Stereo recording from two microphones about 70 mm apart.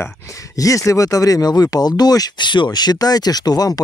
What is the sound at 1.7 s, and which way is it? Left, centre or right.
Speech, left.